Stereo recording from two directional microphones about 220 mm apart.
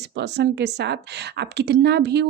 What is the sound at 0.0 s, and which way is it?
A woman's voice, 50° right (ahead or behind).